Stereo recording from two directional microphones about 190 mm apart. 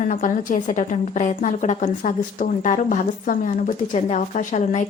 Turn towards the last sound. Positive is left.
turn(degrees=40)  # may be behind; listen again after turning